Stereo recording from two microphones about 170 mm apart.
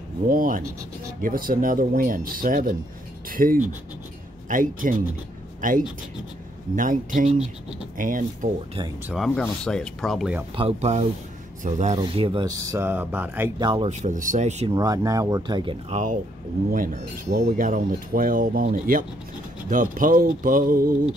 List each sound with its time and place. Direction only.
0.3 s speech: 55° right (ahead or behind)
8.0 s speech: 50° right (ahead or behind)
9.1 s speech: 5° left (ahead or behind)
10.5 s speech: 35° right (ahead or behind)
12.0 s speech: 30° right (ahead or behind)
12.7 s speech: 10° right (ahead or behind)
13.6 s speech: 30° right (ahead or behind)
13.8 s speech: 50° right (ahead or behind)
14.7 s speech: 20° right (ahead or behind)
16.9 s speech: 45° right (ahead or behind)